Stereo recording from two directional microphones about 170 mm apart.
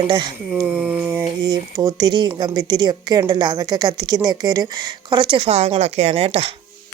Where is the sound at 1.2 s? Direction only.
25° right (ahead or behind).